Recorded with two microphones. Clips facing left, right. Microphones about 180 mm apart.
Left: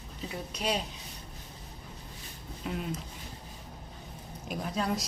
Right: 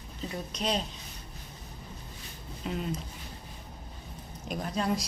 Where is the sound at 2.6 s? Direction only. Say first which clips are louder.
Right 2 dB; 5° left (ahead or behind).